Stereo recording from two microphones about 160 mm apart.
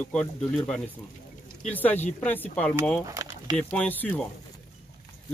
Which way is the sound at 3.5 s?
10° left (ahead or behind).